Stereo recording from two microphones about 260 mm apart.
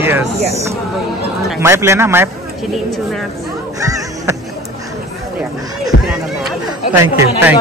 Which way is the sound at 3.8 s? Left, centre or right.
Centre.